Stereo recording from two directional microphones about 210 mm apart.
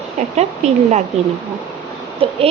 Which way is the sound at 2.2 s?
25° right (ahead or behind).